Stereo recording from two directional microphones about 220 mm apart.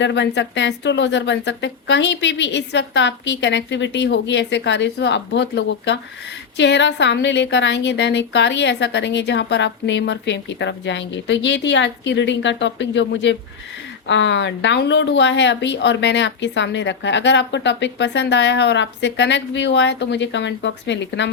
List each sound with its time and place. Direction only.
0.0 s a woman's voice: 50° left (ahead or behind)